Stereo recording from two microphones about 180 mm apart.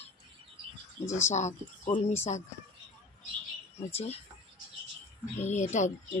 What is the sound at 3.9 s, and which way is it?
Speech, 35° left (ahead or behind).